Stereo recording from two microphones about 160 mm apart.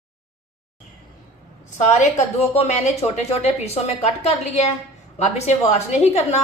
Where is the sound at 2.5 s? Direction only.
45° left (ahead or behind).